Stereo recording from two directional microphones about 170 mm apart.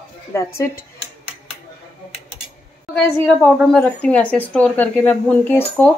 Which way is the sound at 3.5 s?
5° left (ahead or behind).